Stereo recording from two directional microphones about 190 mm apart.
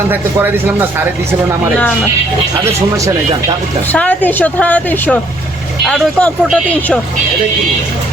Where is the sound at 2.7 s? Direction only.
15° right (ahead or behind).